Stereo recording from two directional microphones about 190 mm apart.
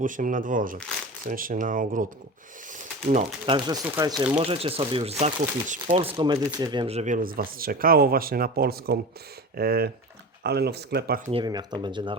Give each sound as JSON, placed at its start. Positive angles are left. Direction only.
{"t": 0.0, "sound": "speech", "side_deg": -45}
{"t": 2.6, "sound": "a sound", "side_deg": -40}
{"t": 3.4, "sound": "speech", "side_deg": -25}
{"t": 4.4, "sound": "speech", "side_deg": -30}
{"t": 5.2, "sound": "speech", "side_deg": -40}
{"t": 11.3, "sound": "speech", "side_deg": -25}